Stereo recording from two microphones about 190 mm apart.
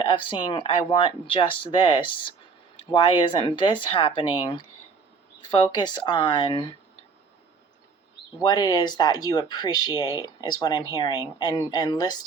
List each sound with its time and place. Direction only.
0.0 s speech: 25° left (ahead or behind)
8.4 s speech: 20° left (ahead or behind)